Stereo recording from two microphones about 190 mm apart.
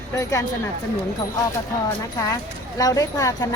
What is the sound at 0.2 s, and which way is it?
Speech, 15° left (ahead or behind).